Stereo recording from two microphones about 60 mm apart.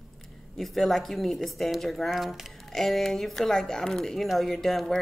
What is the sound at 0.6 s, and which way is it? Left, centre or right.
Speech, centre.